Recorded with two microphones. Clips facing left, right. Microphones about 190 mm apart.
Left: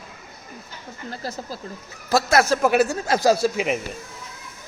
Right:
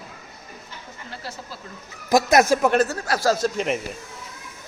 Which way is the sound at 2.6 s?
10° left (ahead or behind).